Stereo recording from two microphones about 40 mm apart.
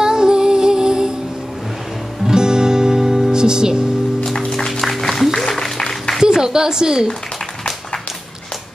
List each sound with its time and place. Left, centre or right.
0.0 s music: centre
2.2 s music: centre
4.3 s music: centre
6.2 s a woman's voice: centre